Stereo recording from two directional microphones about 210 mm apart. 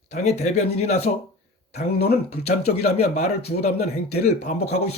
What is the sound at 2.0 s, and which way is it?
Speech, 50° left (ahead or behind).